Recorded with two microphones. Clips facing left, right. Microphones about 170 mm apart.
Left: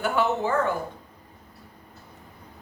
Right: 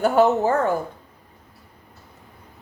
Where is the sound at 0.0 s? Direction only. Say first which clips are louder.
Right 7 dB; 40° right (ahead or behind).